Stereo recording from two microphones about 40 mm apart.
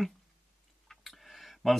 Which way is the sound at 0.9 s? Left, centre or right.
Centre.